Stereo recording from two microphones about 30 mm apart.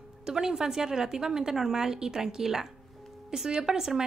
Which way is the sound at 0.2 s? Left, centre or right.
Centre.